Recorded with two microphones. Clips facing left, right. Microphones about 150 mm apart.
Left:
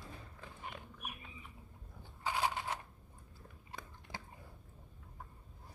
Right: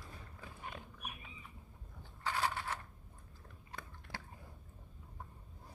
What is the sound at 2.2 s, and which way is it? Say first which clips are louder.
Crushing: left 1 dB; 15° left (ahead or behind).